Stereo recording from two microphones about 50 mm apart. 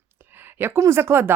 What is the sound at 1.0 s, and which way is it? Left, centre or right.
Speech, right.